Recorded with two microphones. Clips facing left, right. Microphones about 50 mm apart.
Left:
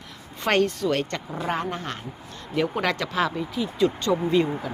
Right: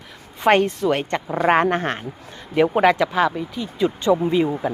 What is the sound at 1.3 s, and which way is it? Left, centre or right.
Speech, right.